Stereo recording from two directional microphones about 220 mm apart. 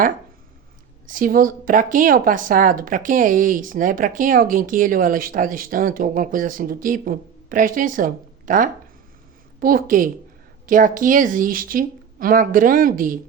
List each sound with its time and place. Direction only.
1.0 s speech: 40° right (ahead or behind)